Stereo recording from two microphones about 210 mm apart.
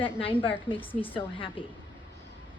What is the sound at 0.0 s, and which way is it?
A woman's voice, 25° left (ahead or behind).